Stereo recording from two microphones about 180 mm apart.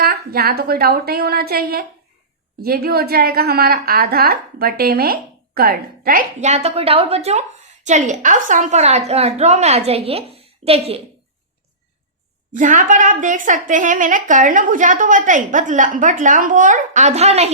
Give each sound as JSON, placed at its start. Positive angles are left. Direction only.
{"t": 0.0, "sound": "a woman's voice", "side_deg": -60}
{"t": 12.5, "sound": "a woman's voice", "side_deg": -45}